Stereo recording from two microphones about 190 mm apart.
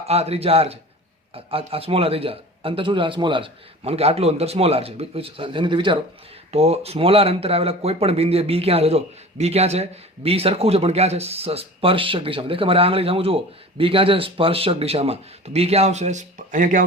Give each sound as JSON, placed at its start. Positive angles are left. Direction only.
{"t": 0.0, "sound": "a man's voice", "side_deg": -35}